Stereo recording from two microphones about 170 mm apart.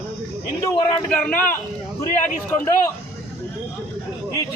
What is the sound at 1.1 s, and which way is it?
Speech, 10° left (ahead or behind).